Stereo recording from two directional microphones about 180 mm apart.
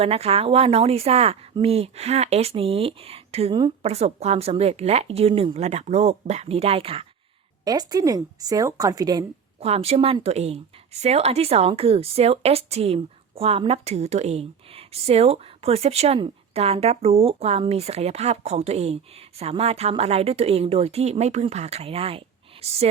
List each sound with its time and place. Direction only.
0.0 s speech: 35° right (ahead or behind)
7.6 s a woman's voice: 20° right (ahead or behind)
9.6 s speech: 35° right (ahead or behind)